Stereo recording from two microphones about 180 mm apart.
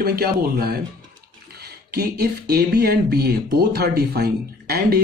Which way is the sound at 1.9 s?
60° right (ahead or behind).